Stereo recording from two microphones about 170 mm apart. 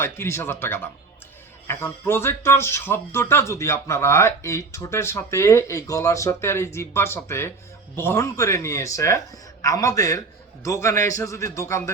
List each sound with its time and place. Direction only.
0.0 s speech: 15° left (ahead or behind)